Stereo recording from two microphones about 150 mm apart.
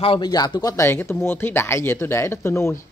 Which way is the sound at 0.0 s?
30° left (ahead or behind).